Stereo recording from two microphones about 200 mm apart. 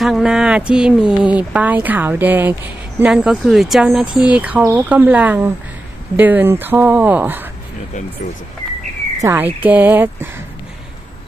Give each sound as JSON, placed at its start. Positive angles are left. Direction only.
{"t": 0.0, "sound": "speech", "side_deg": 0}
{"t": 9.2, "sound": "speech", "side_deg": -10}